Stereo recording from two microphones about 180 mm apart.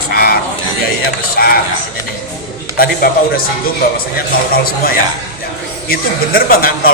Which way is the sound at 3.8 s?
55° left (ahead or behind).